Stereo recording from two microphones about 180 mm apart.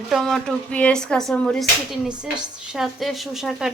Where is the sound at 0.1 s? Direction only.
Centre (ahead or behind).